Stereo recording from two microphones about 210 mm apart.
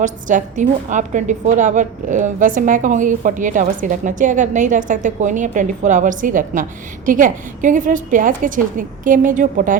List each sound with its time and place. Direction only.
0.0 s a woman's voice: 35° right (ahead or behind)